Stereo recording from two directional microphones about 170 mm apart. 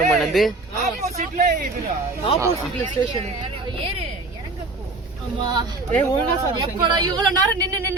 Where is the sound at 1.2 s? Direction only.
55° right (ahead or behind).